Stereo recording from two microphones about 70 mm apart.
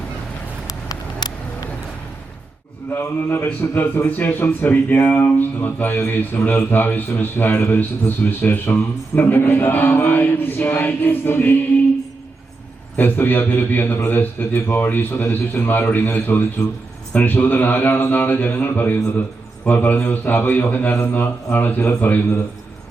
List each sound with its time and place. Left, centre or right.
0.7 s vehicle: left
2.9 s a man's voice: left
13.0 s a man's voice: left